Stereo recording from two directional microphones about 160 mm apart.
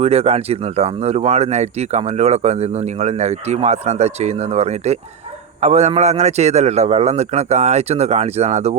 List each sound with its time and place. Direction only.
0.0 s speech: 40° right (ahead or behind)